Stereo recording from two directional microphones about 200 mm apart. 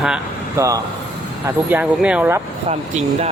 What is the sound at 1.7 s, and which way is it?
Speech, 5° right (ahead or behind).